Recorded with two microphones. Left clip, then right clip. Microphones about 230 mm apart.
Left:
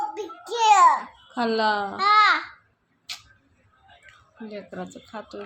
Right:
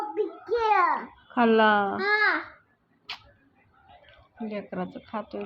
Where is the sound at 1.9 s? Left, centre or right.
Centre.